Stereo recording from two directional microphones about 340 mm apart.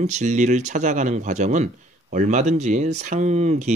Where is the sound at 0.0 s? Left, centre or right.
Right.